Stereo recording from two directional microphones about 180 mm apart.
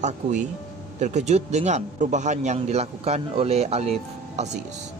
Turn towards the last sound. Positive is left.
turn(degrees=-40)  # may be behind; listen again after turning